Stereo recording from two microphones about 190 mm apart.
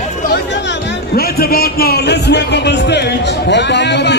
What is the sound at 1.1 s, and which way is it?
Speech, 55° left (ahead or behind).